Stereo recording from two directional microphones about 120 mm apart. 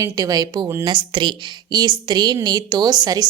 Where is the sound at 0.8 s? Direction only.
45° right (ahead or behind).